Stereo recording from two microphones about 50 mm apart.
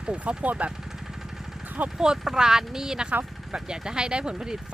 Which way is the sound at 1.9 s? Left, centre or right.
Centre.